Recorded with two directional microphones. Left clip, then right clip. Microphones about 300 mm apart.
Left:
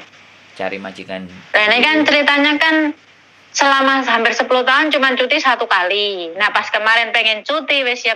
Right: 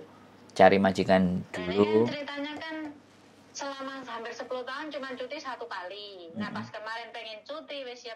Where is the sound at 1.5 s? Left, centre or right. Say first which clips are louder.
Left 16 dB; left.